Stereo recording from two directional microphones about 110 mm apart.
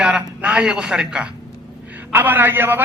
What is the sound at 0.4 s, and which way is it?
A man's voice, 10° right (ahead or behind).